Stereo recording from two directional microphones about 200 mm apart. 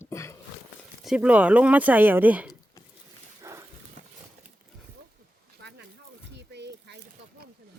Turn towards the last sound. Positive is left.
turn(degrees=-60)  # may be behind; listen again after turning